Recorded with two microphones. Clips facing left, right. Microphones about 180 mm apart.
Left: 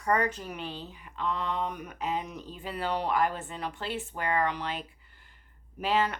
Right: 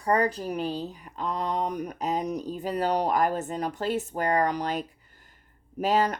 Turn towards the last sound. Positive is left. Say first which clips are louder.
# right 4 dB
turn(degrees=-40)  # may be behind; listen again after turning